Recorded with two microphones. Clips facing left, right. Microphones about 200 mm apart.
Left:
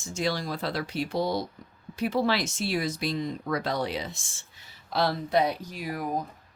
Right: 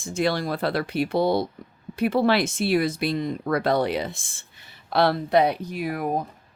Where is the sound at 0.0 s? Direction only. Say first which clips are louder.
Right 5 dB; 55° right (ahead or behind).